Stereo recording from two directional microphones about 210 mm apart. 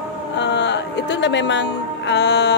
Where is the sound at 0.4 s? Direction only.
55° left (ahead or behind).